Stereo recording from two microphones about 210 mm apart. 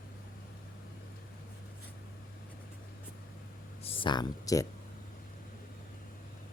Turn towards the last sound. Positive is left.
turn(degrees=20)  # may be behind; listen again after turning